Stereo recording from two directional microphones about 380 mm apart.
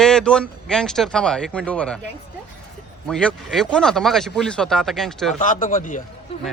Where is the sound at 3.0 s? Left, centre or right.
Centre.